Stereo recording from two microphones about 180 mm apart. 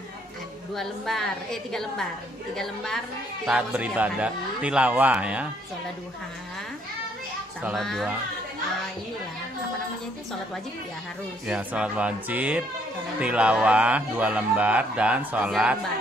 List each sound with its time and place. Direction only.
0.7 s a woman's voice: centre (ahead or behind)
7.6 s a woman's voice: centre (ahead or behind)
11.4 s a man's voice: 5° right (ahead or behind)